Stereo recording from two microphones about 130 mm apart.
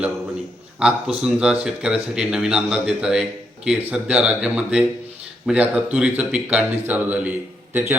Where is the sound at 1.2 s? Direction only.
5° right (ahead or behind).